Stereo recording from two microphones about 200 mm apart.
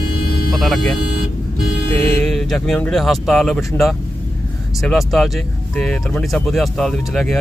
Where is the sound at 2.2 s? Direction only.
Centre (ahead or behind).